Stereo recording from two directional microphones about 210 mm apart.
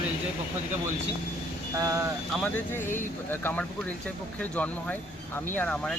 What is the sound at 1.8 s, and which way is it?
Speech, 15° right (ahead or behind).